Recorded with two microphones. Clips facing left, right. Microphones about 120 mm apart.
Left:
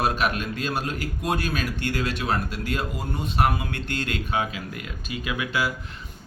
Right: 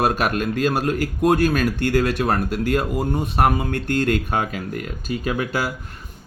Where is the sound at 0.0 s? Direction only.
45° right (ahead or behind).